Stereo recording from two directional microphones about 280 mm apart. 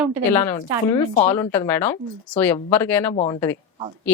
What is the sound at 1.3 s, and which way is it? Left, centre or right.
Speech, centre.